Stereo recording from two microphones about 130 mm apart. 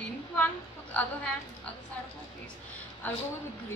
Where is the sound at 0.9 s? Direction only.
10° left (ahead or behind).